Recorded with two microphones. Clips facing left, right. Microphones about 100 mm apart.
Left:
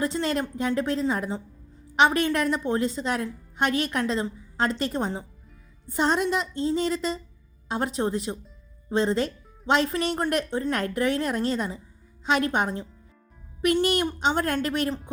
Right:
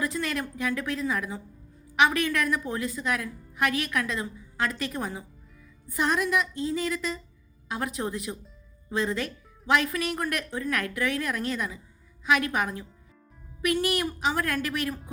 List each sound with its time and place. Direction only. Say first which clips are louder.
0.0 s a woman's voice: left 4 dB; 30° left (ahead or behind)